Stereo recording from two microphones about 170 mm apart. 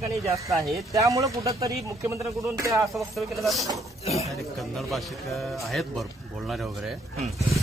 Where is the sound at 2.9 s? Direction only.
Centre (ahead or behind).